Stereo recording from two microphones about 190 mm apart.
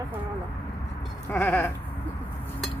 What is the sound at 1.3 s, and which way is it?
Speech, 10° left (ahead or behind).